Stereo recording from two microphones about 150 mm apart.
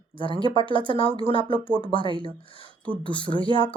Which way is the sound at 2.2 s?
35° left (ahead or behind).